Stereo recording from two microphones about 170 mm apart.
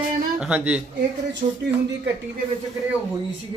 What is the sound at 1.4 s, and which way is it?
Speech, 40° right (ahead or behind).